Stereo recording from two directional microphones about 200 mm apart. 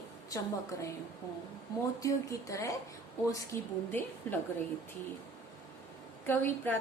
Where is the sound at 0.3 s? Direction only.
15° left (ahead or behind).